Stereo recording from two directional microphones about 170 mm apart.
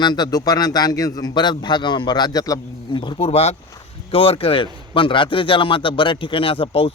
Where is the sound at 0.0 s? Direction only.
25° left (ahead or behind).